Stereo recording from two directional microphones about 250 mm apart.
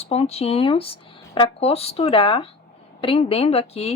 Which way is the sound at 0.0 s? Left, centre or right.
Left.